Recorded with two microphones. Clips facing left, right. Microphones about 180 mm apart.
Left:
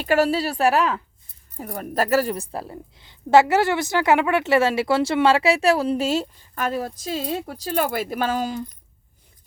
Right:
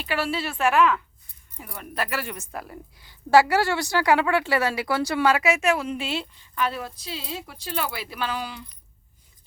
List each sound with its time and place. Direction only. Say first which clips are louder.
0.0 s speech: left 8 dB; 45° left (ahead or behind)